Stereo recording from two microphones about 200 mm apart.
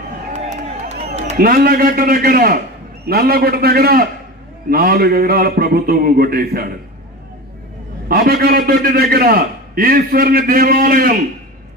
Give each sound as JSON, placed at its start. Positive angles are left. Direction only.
{"t": 0.3, "sound": "a sound", "side_deg": -35}
{"t": 1.4, "sound": "a man's voice", "side_deg": -50}
{"t": 8.1, "sound": "a man's voice", "side_deg": -50}